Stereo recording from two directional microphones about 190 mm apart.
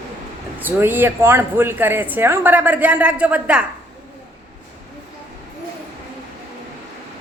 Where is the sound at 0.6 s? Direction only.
10° right (ahead or behind).